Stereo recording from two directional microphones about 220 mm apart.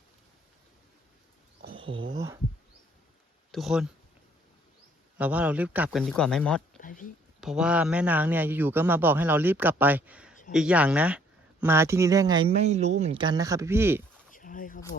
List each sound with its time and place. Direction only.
1.7 s a sound: 25° right (ahead or behind)
2.1 s a man's voice: 15° right (ahead or behind)
3.5 s speech: centre (ahead or behind)
5.1 s a man's voice: 5° right (ahead or behind)
6.8 s speech: 35° left (ahead or behind)
7.4 s a man's voice: 5° right (ahead or behind)
14.3 s a sound: 40° left (ahead or behind)